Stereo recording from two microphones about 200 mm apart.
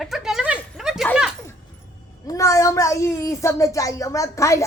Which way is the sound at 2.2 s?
15° left (ahead or behind).